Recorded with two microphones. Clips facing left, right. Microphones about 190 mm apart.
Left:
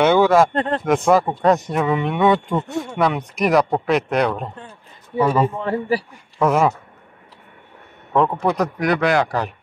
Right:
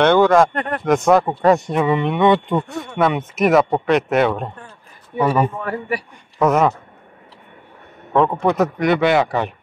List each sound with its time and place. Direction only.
0.0 s speech: 5° left (ahead or behind)
0.5 s a man's voice: 25° left (ahead or behind)
0.8 s speech: centre (ahead or behind)
5.6 s a man's voice: 30° left (ahead or behind)
8.1 s speech: centre (ahead or behind)